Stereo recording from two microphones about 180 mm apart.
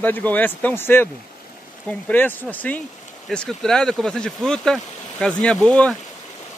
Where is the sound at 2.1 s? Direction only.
10° left (ahead or behind).